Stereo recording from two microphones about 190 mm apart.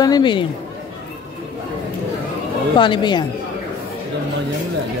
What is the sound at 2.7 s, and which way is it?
Speech, 25° left (ahead or behind).